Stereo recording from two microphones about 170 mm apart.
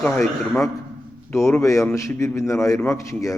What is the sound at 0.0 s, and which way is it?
Speech, centre (ahead or behind).